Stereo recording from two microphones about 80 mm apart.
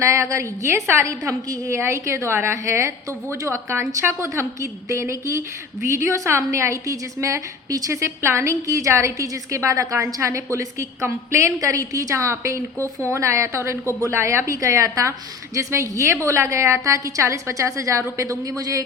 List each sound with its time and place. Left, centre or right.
0.0 s a woman's voice: right
7.9 s a woman's voice: right